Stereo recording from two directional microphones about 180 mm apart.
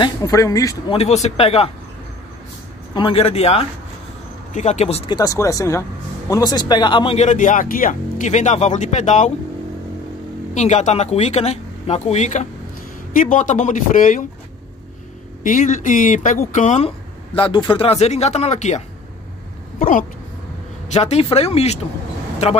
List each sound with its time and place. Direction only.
0.0 s speech: 20° left (ahead or behind)
0.9 s speech: 35° left (ahead or behind)
2.9 s speech: 30° left (ahead or behind)
5.1 s speech: 20° left (ahead or behind); by 9.3 s 40° left (ahead or behind)
10.5 s speech: 40° left (ahead or behind)
15.4 s speech: 45° left (ahead or behind)
19.8 s speech: 50° left (ahead or behind)
20.9 s speech: 35° left (ahead or behind)